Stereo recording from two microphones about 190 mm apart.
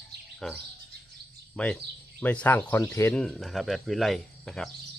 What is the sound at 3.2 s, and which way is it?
Speech, centre (ahead or behind).